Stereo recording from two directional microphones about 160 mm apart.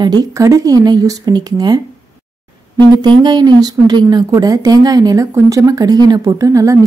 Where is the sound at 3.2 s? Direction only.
25° right (ahead or behind).